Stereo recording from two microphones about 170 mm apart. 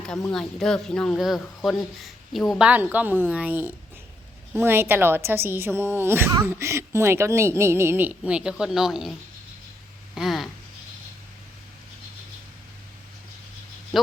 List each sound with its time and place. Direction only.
0.3 s a woman's voice: 5° left (ahead or behind)
10.2 s speech: centre (ahead or behind)
13.9 s speech: centre (ahead or behind)